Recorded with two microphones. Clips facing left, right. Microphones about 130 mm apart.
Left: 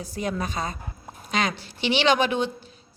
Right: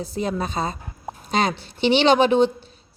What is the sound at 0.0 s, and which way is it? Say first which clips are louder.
A woman's voice: right 3 dB; 25° right (ahead or behind).